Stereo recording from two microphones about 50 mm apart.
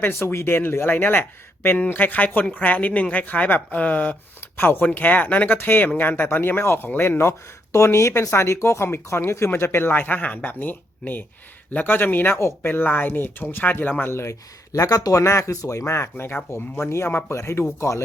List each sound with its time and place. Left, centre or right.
0.0 s speech: left
4.4 s speech: left
4.9 s speech: left
5.6 s speech: left
7.2 s speech: left
9.9 s speech: left
14.1 s speech: left